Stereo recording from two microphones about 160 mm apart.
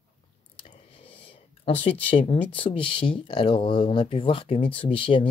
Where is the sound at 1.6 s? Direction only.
40° left (ahead or behind).